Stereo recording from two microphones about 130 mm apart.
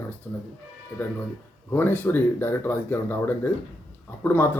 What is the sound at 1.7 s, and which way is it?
Speech, 15° left (ahead or behind).